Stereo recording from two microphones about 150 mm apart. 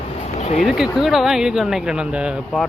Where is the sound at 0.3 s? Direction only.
50° left (ahead or behind).